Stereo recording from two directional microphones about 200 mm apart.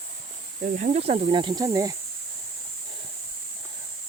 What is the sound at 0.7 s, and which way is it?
Speech, 35° right (ahead or behind).